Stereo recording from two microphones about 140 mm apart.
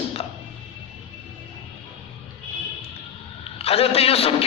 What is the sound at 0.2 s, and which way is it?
Music, 45° left (ahead or behind).